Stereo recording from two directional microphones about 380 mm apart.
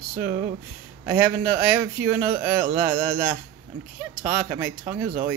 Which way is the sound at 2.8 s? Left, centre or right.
Right.